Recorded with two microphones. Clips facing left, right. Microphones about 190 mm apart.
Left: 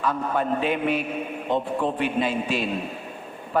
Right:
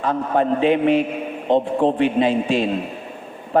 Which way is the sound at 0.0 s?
30° right (ahead or behind).